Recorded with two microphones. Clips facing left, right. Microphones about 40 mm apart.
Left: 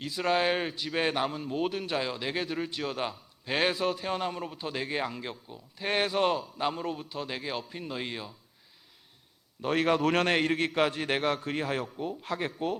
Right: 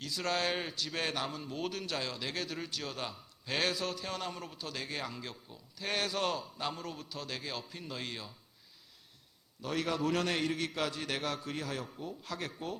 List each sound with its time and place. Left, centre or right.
0.0 s a man's voice: left
9.6 s a man's voice: left